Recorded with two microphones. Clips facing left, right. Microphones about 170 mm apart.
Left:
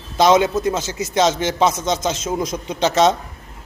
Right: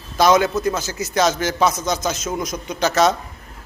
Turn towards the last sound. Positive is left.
turn(degrees=25)  # may be behind; listen again after turning